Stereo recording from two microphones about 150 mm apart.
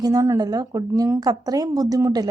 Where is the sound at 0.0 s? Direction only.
25° right (ahead or behind).